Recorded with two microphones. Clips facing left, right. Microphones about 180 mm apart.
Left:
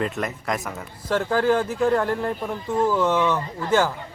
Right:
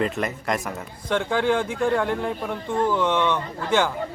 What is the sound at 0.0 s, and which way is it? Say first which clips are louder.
A man's voice: right 1 dB; centre (ahead or behind).